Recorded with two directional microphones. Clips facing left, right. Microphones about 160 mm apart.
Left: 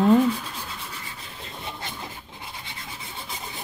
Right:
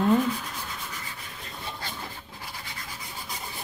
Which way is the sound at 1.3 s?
20° left (ahead or behind).